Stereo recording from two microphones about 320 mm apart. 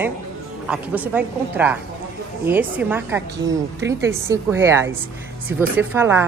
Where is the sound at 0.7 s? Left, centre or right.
Centre.